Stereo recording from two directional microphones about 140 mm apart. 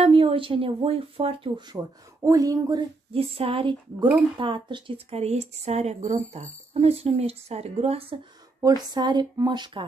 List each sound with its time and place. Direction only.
0.0 s speech: 40° right (ahead or behind)
2.2 s speech: 25° right (ahead or behind)
3.1 s a woman's voice: 45° right (ahead or behind)
8.6 s speech: 30° right (ahead or behind)